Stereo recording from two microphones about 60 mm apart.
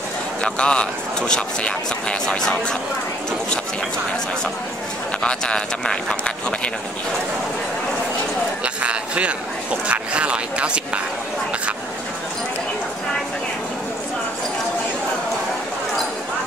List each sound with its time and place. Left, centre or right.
0.4 s speech: centre
5.2 s speech: centre
8.6 s speech: right